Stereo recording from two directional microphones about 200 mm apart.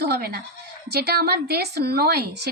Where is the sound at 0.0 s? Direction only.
50° right (ahead or behind).